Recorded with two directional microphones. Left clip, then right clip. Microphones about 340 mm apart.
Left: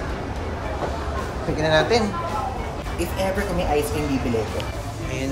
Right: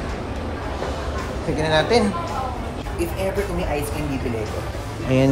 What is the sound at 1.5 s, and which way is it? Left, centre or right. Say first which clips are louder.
Speech: even; centre.